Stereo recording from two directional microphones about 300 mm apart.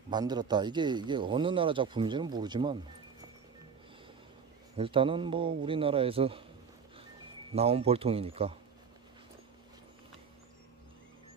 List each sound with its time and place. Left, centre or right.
0.1 s speech: centre
4.7 s speech: centre
7.5 s speech: centre